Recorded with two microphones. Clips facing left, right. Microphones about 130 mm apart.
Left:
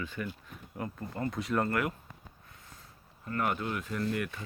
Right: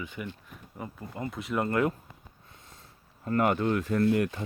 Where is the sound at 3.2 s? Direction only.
30° right (ahead or behind).